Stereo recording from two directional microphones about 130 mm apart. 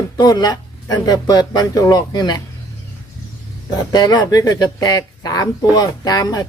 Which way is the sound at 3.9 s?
30° left (ahead or behind).